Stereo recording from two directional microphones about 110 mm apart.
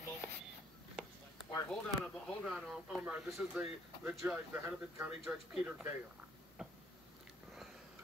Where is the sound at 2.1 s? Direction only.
5° left (ahead or behind).